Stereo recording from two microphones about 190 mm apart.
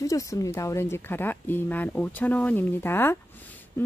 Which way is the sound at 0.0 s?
15° left (ahead or behind).